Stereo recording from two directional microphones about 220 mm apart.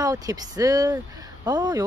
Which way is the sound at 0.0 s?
15° right (ahead or behind).